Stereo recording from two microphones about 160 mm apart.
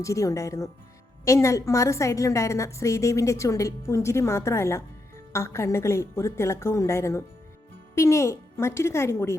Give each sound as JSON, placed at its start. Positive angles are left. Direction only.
{"t": 0.0, "sound": "a woman's voice", "side_deg": 20}